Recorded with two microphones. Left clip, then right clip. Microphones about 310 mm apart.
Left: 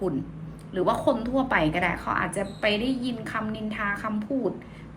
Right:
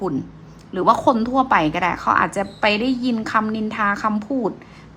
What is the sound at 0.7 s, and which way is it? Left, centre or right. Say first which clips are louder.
A woman's voice: right 8 dB; centre.